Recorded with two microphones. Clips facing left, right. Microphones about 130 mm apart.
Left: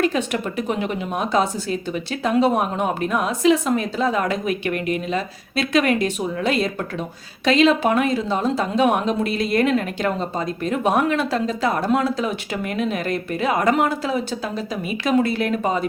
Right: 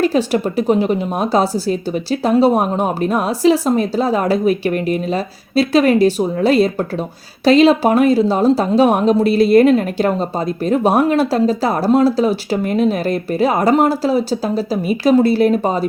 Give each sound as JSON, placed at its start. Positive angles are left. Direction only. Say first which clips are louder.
{"t": 0.0, "sound": "speech", "louder": "right 6 dB", "side_deg": -35}